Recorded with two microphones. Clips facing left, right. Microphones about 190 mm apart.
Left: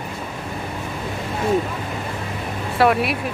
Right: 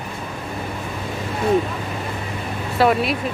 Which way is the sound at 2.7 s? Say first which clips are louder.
Even; centre (ahead or behind).